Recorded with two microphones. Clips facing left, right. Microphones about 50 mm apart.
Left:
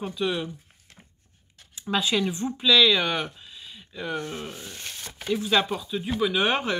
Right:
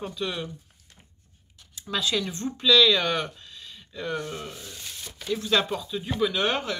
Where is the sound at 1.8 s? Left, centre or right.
Left.